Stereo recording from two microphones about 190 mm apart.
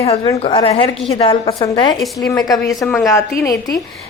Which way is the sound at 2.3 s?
20° left (ahead or behind).